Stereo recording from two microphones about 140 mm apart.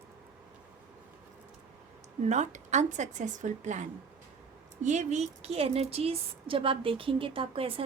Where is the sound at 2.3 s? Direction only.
55° right (ahead or behind).